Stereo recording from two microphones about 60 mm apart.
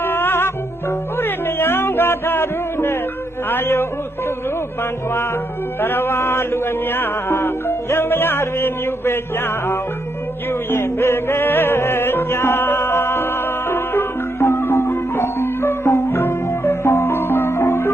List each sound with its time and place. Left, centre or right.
0.0 s music: left
3.5 s a man's voice: left
4.8 s music: left